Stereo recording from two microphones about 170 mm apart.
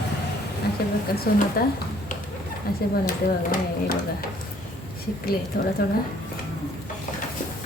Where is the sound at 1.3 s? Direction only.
60° left (ahead or behind).